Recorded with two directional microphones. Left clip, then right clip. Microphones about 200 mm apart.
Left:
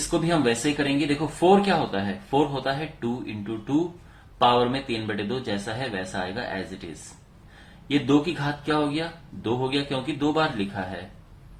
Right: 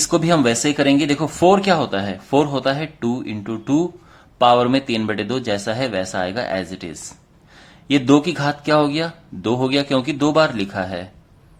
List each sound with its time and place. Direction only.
0.1 s speech: 55° right (ahead or behind)
7.9 s speech: 55° right (ahead or behind)